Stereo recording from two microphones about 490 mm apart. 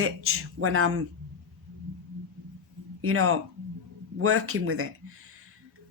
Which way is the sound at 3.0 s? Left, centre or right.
Right.